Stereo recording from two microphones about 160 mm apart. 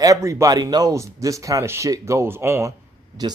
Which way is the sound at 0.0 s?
20° right (ahead or behind).